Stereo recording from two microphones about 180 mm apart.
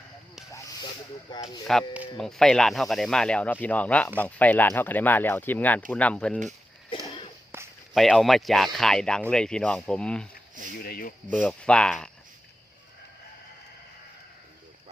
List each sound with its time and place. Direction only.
1.3 s speech: 25° left (ahead or behind)
1.7 s speech: centre (ahead or behind)
6.9 s a sound: 30° left (ahead or behind)
7.5 s walk: 10° right (ahead or behind)
7.9 s speech: centre (ahead or behind)
10.8 s speech: 55° left (ahead or behind)
11.3 s speech: centre (ahead or behind)